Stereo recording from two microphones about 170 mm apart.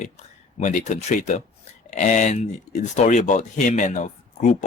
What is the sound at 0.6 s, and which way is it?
Speech, 45° left (ahead or behind).